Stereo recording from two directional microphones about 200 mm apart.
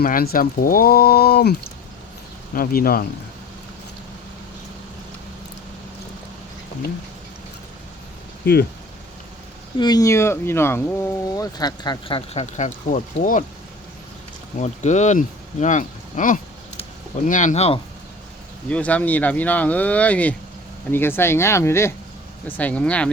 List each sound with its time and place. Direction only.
0.0 s speech: 45° left (ahead or behind)
2.6 s speech: 45° left (ahead or behind)
9.7 s speech: 20° left (ahead or behind); by 13.4 s 40° left (ahead or behind)
14.6 s speech: 35° left (ahead or behind)
15.6 s a sound: 40° left (ahead or behind)
17.2 s speech: 40° left (ahead or behind)
18.7 s speech: 5° left (ahead or behind)